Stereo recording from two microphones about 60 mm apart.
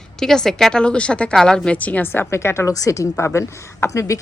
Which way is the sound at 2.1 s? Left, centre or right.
Left.